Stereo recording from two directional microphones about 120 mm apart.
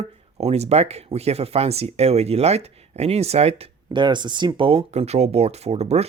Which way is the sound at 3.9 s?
40° right (ahead or behind).